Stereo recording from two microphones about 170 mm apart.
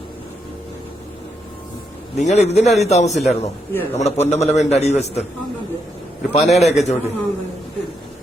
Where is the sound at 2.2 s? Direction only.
40° left (ahead or behind).